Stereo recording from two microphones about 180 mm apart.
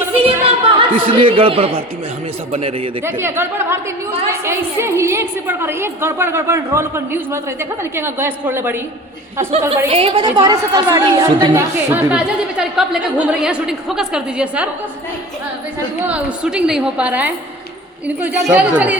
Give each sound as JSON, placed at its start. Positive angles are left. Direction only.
{"t": 0.1, "sound": "a sound", "side_deg": -30}
{"t": 1.0, "sound": "speech", "side_deg": -30}
{"t": 3.0, "sound": "a woman's voice", "side_deg": -10}
{"t": 9.5, "sound": "a woman's voice", "side_deg": -35}
{"t": 11.9, "sound": "a woman's voice", "side_deg": -10}
{"t": 16.0, "sound": "a woman's voice", "side_deg": -5}